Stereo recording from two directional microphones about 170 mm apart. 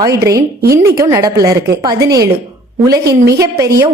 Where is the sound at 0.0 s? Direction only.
20° right (ahead or behind).